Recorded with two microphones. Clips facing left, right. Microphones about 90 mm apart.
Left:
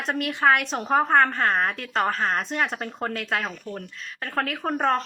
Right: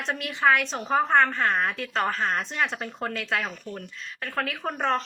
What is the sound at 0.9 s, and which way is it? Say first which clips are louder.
A woman's voice: left 2 dB; 40° left (ahead or behind).